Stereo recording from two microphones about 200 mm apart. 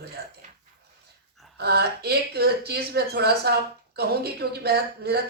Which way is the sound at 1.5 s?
55° right (ahead or behind).